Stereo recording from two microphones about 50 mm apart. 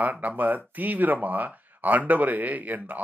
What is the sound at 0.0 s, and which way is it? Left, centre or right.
Speech, right.